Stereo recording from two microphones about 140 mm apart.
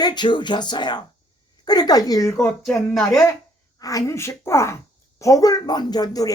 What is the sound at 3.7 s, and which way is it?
Speech, 25° left (ahead or behind).